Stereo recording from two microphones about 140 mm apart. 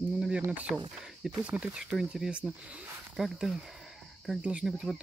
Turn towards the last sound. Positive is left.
turn(degrees=0)  # may be behind; listen again after turning